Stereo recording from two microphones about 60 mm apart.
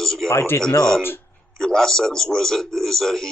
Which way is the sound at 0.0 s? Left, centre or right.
Centre.